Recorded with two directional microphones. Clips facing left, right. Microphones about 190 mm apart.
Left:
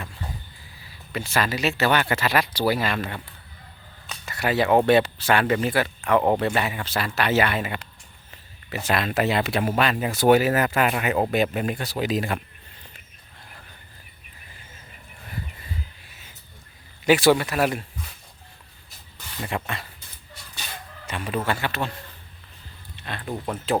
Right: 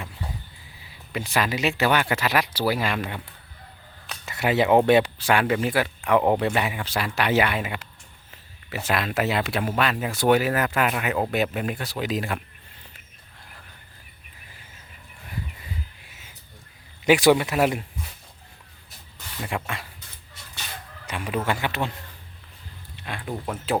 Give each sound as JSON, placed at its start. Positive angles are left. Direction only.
{"t": 1.1, "sound": "speech", "side_deg": -15}
{"t": 4.3, "sound": "speech", "side_deg": -20}
{"t": 8.9, "sound": "speech", "side_deg": -5}
{"t": 17.1, "sound": "speech", "side_deg": -15}
{"t": 19.4, "sound": "speech", "side_deg": -5}
{"t": 21.1, "sound": "speech", "side_deg": -10}
{"t": 23.0, "sound": "speech", "side_deg": -10}